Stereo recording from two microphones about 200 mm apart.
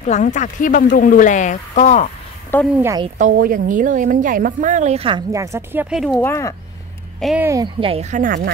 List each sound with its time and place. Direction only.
0.0 s speech: 35° left (ahead or behind)
2.8 s speech: 15° right (ahead or behind)
3.2 s a woman's voice: 40° right (ahead or behind)
5.3 s speech: 15° right (ahead or behind)
6.2 s speech: 15° left (ahead or behind)
7.2 s speech: centre (ahead or behind)
7.4 s speech: 20° right (ahead or behind); by 8.4 s 40° right (ahead or behind)